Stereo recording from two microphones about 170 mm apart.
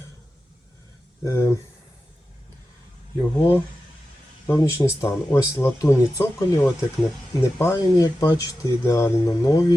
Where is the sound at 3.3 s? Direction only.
15° left (ahead or behind).